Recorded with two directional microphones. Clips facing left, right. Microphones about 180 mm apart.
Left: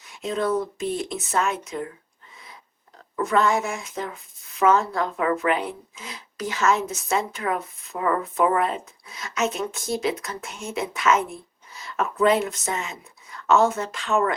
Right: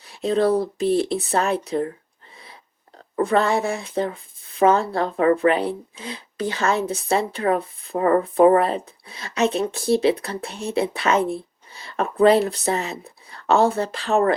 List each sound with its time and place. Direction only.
0.0 s speech: 35° right (ahead or behind)
3.2 s speech: 30° right (ahead or behind)